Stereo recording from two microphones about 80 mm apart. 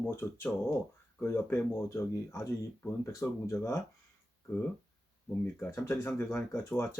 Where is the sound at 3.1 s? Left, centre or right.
Left.